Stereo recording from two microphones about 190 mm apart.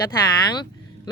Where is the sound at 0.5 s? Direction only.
25° left (ahead or behind).